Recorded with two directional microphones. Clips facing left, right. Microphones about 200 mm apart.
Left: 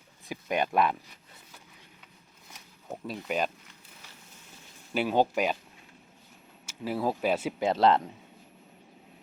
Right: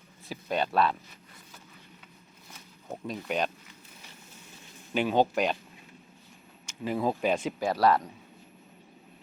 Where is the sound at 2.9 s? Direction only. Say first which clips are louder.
Even; 5° left (ahead or behind).